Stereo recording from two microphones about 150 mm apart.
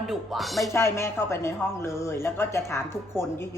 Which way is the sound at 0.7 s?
15° left (ahead or behind).